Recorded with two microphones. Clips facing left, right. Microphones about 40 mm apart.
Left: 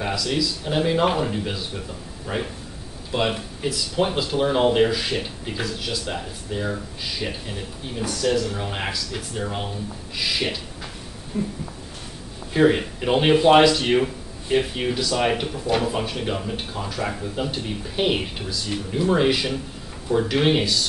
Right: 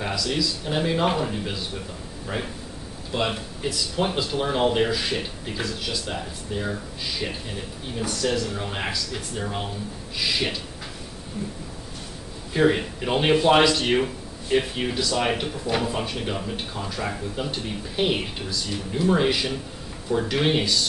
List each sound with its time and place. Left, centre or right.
0.0 s speech: centre
12.5 s speech: centre